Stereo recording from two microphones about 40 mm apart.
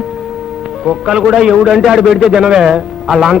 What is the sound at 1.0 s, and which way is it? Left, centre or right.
A man's voice, centre.